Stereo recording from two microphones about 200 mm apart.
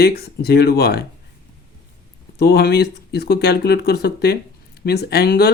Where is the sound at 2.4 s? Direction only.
55° left (ahead or behind).